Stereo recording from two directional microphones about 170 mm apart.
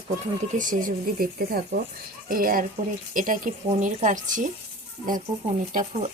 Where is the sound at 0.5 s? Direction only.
50° right (ahead or behind).